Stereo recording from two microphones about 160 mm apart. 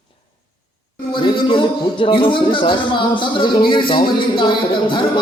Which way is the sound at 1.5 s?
30° left (ahead or behind).